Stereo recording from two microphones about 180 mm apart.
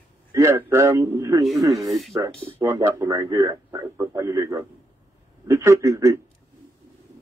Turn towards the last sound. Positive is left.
turn(degrees=-15)  # may be behind; listen again after turning